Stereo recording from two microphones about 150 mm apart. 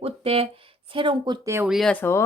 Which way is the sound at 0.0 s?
40° right (ahead or behind).